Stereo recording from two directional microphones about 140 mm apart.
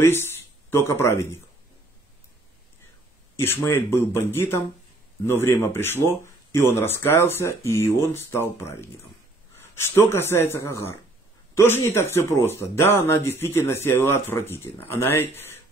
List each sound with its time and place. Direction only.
0.0 s speech: 15° left (ahead or behind)
3.3 s speech: 15° left (ahead or behind)
9.8 s speech: 15° left (ahead or behind)